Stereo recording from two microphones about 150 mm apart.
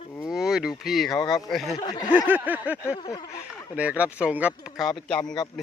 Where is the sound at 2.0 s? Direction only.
10° right (ahead or behind).